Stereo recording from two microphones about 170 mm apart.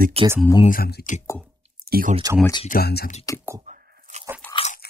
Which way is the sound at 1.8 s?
60° right (ahead or behind).